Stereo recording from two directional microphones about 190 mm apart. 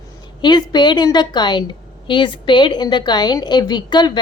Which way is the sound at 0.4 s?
20° left (ahead or behind).